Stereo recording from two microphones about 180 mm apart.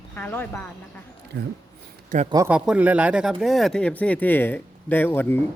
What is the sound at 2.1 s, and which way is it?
Speech, 50° right (ahead or behind).